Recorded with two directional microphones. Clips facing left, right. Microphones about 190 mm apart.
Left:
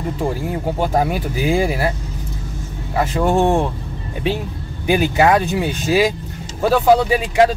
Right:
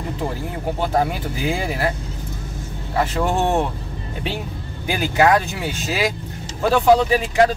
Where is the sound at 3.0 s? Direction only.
15° left (ahead or behind).